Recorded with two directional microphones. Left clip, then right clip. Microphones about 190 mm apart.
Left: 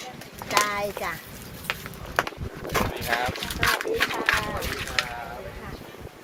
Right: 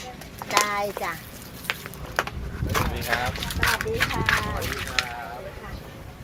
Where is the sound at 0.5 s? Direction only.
15° right (ahead or behind).